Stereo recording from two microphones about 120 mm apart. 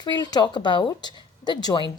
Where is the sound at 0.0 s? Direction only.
40° left (ahead or behind).